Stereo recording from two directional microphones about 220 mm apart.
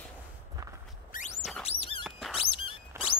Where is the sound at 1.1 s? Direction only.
40° left (ahead or behind).